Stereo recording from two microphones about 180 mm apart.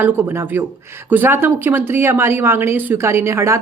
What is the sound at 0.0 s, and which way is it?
Speech, 10° right (ahead or behind).